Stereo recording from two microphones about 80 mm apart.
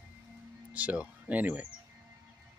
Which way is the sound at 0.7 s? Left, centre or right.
Centre.